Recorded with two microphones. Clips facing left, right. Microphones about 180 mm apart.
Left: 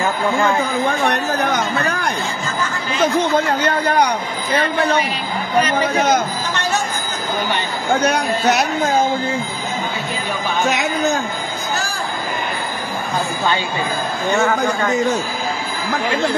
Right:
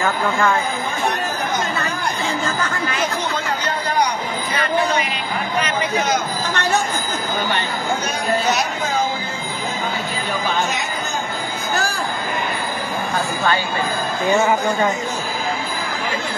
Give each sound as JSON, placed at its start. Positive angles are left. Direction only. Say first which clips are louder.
{"t": 3.4, "sound": "speech", "louder": "left 5 dB", "side_deg": 55}
{"t": 7.9, "sound": "speech", "louder": "left 5 dB", "side_deg": 65}